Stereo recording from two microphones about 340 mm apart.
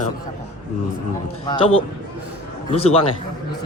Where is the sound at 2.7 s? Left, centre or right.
Centre.